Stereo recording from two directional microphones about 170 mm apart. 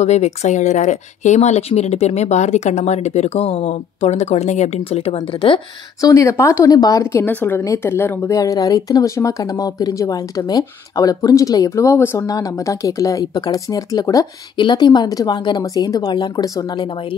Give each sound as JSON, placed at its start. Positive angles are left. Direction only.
{"t": 0.0, "sound": "speech", "side_deg": 40}